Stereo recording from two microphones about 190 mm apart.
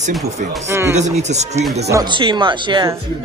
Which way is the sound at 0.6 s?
15° right (ahead or behind).